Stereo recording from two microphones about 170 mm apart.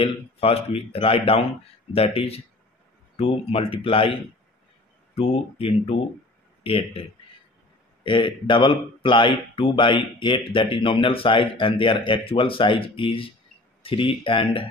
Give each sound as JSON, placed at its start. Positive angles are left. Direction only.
{"t": 0.0, "sound": "speech", "side_deg": 35}